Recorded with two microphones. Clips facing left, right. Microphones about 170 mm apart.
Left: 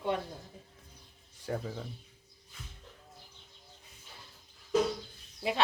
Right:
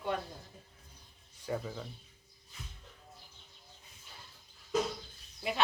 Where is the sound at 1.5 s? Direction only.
55° left (ahead or behind).